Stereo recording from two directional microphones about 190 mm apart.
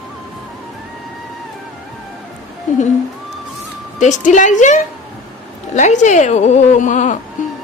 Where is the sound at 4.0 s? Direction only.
40° left (ahead or behind).